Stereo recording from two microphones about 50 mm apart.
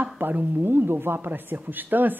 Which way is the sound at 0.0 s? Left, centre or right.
Right.